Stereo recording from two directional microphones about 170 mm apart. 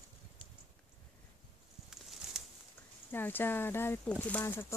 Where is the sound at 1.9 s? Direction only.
5° right (ahead or behind).